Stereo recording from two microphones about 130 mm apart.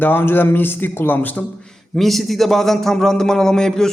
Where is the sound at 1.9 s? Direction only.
Centre (ahead or behind).